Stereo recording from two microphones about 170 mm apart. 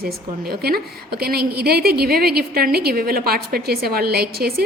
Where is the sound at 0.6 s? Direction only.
65° right (ahead or behind).